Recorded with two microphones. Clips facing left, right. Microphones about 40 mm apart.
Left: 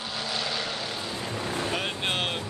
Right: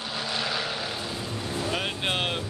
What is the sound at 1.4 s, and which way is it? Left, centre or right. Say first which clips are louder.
Boat: left 2 dB; left.